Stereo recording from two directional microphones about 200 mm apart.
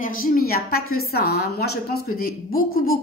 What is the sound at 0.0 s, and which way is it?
A woman's voice, 45° left (ahead or behind).